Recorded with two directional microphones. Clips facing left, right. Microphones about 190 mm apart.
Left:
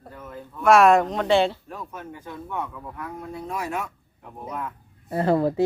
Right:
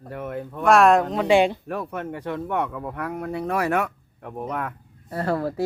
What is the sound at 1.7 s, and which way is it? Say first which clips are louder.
Speech: right 8 dB; 70° right (ahead or behind).